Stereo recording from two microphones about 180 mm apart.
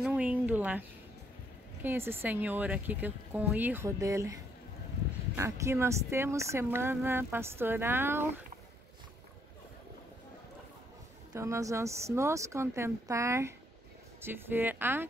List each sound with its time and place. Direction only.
0.0 s a sound: 5° right (ahead or behind)
1.8 s speech: 10° right (ahead or behind)
11.3 s speech: 15° right (ahead or behind)